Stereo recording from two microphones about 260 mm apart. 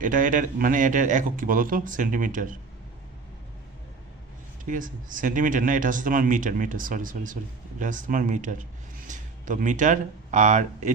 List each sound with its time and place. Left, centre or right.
0.0 s speech: right
4.6 s speech: right